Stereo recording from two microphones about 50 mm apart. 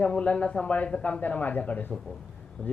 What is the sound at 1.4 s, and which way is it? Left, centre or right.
Speech, left.